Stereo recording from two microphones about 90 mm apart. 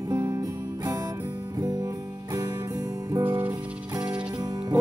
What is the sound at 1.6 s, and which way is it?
Music, 45° right (ahead or behind).